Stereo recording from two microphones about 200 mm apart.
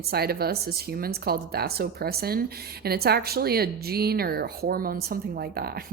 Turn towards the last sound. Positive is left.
turn(degrees=-50)  # may be behind; listen again after turning